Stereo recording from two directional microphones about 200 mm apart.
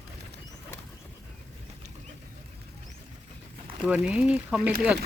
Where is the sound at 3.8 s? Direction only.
5° right (ahead or behind).